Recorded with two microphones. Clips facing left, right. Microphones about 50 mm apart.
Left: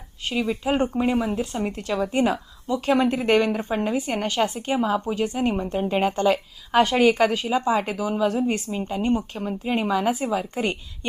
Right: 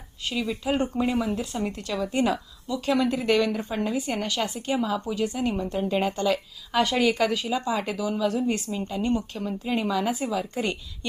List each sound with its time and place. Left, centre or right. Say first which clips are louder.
0.3 s speech: left 3 dB; left